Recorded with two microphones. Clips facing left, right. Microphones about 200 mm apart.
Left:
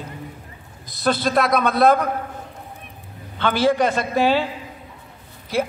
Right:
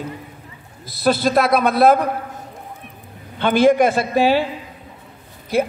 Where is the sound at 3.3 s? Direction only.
15° right (ahead or behind).